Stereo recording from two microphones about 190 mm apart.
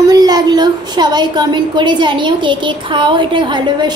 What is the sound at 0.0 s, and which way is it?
A woman's voice, 20° right (ahead or behind).